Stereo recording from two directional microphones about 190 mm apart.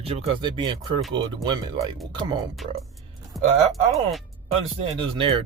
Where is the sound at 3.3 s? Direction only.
Centre (ahead or behind).